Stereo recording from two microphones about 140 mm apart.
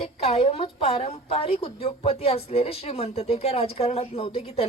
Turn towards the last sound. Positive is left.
turn(degrees=45)  # may be behind; listen again after turning